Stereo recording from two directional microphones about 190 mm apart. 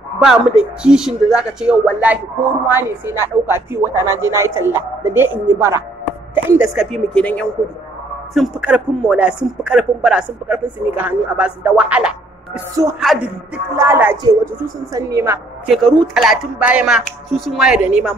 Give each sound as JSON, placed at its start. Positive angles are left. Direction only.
{"t": 0.2, "sound": "a woman's voice", "side_deg": -5}
{"t": 8.4, "sound": "a woman's voice", "side_deg": -5}
{"t": 15.6, "sound": "speech", "side_deg": 0}